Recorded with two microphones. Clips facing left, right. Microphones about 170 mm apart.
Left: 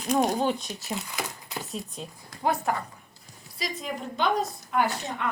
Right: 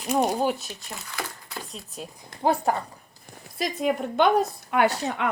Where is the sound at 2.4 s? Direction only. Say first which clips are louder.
Right 4 dB; 30° right (ahead or behind).